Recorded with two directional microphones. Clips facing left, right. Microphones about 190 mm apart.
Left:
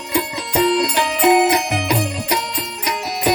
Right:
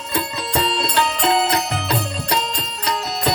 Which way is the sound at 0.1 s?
15° left (ahead or behind).